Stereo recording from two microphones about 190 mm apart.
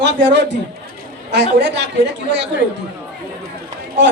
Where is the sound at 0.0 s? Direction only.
65° right (ahead or behind).